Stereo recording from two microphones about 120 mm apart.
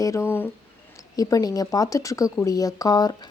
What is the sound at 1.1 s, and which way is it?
A woman's voice, 30° left (ahead or behind).